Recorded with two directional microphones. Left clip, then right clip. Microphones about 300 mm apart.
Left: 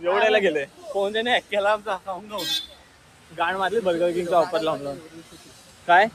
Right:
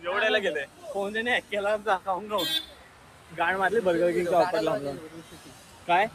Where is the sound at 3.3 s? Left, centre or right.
Centre.